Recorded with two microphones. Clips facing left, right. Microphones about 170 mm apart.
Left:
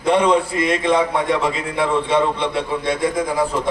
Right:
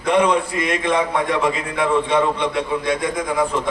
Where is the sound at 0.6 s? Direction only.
30° left (ahead or behind).